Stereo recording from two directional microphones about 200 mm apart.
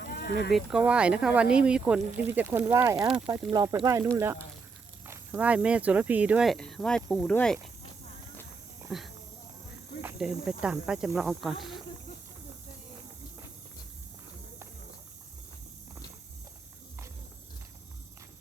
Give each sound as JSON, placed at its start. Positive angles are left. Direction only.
{"t": 0.0, "sound": "a sound", "side_deg": 50}
{"t": 0.5, "sound": "speech", "side_deg": -5}
{"t": 8.9, "sound": "speech", "side_deg": 0}